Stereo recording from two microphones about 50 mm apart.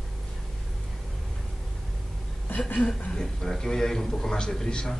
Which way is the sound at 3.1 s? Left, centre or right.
Centre.